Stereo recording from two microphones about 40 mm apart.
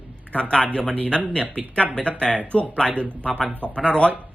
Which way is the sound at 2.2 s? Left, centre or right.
Centre.